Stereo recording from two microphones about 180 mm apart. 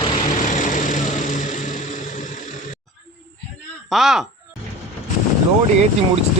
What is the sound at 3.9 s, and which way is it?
Speech, centre (ahead or behind).